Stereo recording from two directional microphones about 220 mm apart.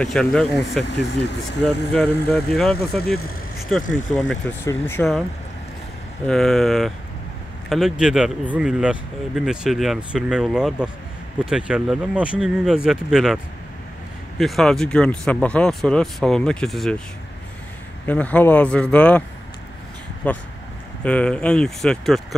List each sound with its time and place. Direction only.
0.0 s speech: 5° left (ahead or behind)
0.8 s speech: 50° left (ahead or behind)
1.9 s speech: 5° left (ahead or behind)
3.0 s speech: 45° left (ahead or behind)
3.9 s speech: centre (ahead or behind)
6.2 s speech: centre (ahead or behind)
14.4 s speech: centre (ahead or behind)
18.0 s speech: 5° left (ahead or behind)
20.2 s speech: 5° left (ahead or behind)